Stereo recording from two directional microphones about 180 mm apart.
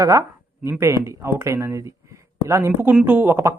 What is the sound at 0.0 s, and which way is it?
Speech, 15° right (ahead or behind).